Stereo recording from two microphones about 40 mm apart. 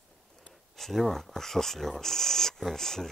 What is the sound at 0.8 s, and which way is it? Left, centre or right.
Speech, centre.